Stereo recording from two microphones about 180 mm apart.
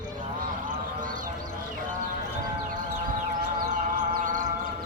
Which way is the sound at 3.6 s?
50° right (ahead or behind).